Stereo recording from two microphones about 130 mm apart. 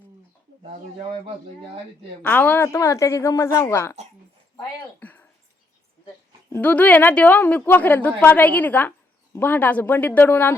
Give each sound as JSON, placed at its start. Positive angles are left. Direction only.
{"t": 2.2, "sound": "a woman's voice", "side_deg": 15}
{"t": 4.9, "sound": "a sound", "side_deg": 15}
{"t": 6.5, "sound": "a woman's voice", "side_deg": 10}